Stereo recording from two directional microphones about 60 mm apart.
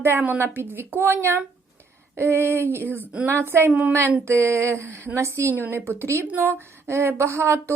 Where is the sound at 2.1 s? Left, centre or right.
Right.